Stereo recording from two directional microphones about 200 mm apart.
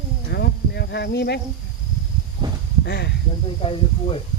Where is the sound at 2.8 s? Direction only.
55° left (ahead or behind).